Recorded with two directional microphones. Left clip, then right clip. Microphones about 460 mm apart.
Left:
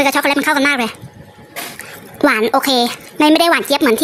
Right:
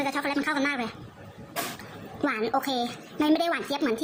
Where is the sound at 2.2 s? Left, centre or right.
Centre.